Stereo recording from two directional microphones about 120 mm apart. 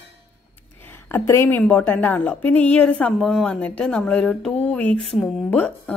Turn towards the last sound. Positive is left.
turn(degrees=10)  # may be behind; listen again after turning